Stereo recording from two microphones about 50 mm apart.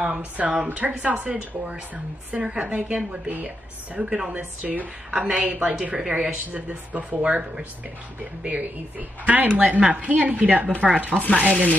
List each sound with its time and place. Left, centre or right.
0.0 s speech: right
4.6 s speech: right